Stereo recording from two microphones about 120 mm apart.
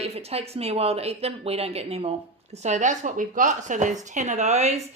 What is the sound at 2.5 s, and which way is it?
Speech, 75° right (ahead or behind).